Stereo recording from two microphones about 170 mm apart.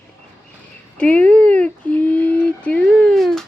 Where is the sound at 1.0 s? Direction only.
10° left (ahead or behind).